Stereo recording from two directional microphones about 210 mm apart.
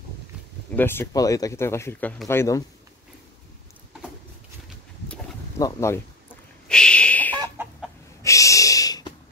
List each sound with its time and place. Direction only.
0.7 s speech: 10° left (ahead or behind)
4.6 s a sound: 5° left (ahead or behind)
5.6 s speech: 15° left (ahead or behind)
6.7 s a sound: 5° left (ahead or behind)
7.6 s chicken: 10° right (ahead or behind)
8.2 s snort: 15° left (ahead or behind)